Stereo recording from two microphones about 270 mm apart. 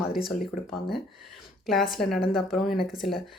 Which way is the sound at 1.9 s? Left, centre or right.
Centre.